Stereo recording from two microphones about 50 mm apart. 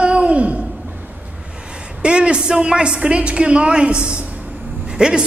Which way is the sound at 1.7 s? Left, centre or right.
Centre.